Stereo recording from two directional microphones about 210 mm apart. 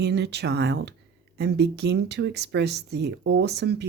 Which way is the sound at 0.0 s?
55° right (ahead or behind).